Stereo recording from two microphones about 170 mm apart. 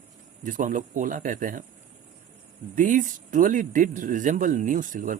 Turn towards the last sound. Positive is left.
turn(degrees=-50)  # may be behind; listen again after turning